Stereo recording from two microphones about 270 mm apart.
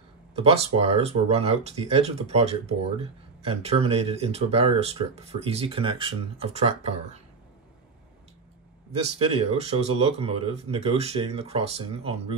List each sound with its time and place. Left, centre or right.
0.4 s speech: right
8.9 s speech: right